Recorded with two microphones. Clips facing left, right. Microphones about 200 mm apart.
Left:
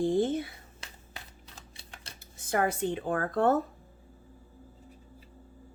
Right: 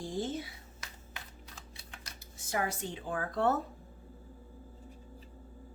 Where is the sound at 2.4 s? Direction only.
55° left (ahead or behind).